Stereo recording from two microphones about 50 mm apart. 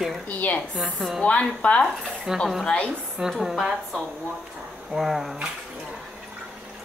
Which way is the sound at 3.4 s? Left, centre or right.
Centre.